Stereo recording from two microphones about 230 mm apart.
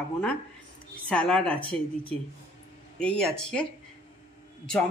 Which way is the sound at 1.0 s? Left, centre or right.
Centre.